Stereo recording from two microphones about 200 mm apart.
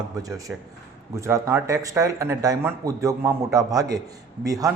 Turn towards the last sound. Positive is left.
turn(degrees=-15)  # may be behind; listen again after turning